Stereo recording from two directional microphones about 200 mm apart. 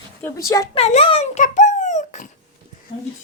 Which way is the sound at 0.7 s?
30° left (ahead or behind).